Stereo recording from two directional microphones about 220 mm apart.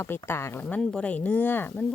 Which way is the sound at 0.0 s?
10° left (ahead or behind).